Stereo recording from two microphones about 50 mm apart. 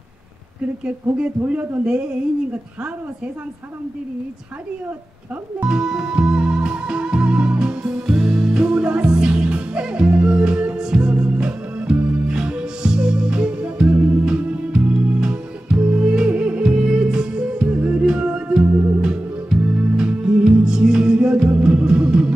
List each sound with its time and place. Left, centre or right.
0.8 s speech: right
5.7 s music: centre
18.6 s music: right
18.9 s music: right